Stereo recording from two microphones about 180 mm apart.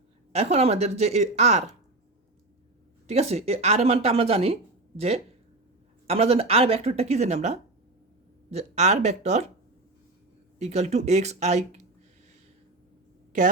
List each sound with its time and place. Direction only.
0.3 s speech: 35° right (ahead or behind)
3.1 s speech: 35° right (ahead or behind)
10.6 s speech: 40° right (ahead or behind)